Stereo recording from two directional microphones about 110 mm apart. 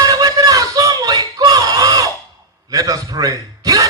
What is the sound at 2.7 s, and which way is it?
A man's voice, 35° right (ahead or behind).